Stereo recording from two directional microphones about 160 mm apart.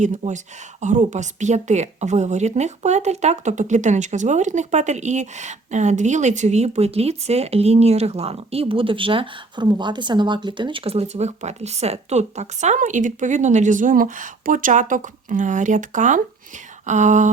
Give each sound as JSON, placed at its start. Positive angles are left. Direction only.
{"t": 0.0, "sound": "a woman's voice", "side_deg": -50}